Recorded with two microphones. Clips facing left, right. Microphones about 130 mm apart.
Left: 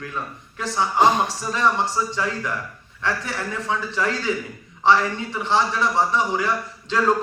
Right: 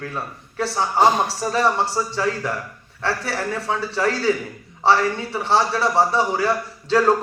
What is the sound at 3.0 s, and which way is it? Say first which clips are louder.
A man's voice: right 2 dB; 35° right (ahead or behind).